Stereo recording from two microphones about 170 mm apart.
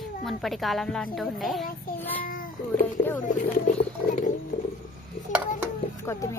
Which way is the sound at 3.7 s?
45° left (ahead or behind).